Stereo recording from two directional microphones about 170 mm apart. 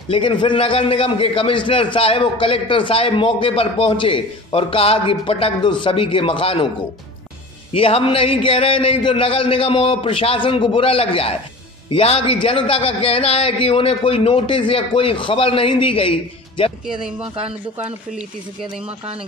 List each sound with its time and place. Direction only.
0.1 s a man's voice: 30° left (ahead or behind)
7.7 s a man's voice: 35° left (ahead or behind)
16.8 s speech: 5° right (ahead or behind)